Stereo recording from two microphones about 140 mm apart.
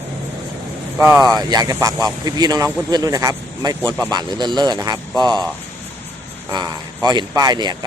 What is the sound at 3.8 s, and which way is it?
Speech, 10° left (ahead or behind).